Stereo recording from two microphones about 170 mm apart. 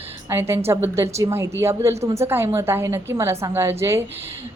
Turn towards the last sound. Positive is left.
turn(degrees=-15)  # may be behind; listen again after turning